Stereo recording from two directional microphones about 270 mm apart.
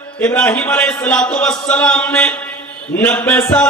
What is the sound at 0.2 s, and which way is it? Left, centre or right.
Music, centre.